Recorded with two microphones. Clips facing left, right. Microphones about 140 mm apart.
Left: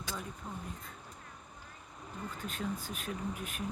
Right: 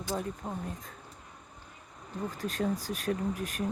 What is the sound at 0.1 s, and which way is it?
Speech, 40° right (ahead or behind).